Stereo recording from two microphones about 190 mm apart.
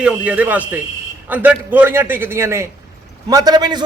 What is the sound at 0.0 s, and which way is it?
A man's voice, 5° right (ahead or behind).